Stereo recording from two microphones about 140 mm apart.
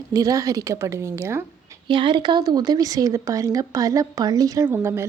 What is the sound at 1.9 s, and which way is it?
A woman's voice, 35° right (ahead or behind).